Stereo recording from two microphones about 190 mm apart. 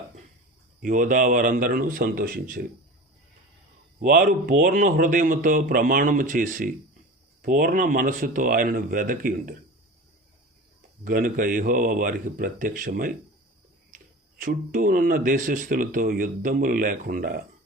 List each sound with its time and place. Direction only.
0.8 s speech: 45° right (ahead or behind)
4.0 s speech: 45° right (ahead or behind)
11.0 s speech: 45° right (ahead or behind)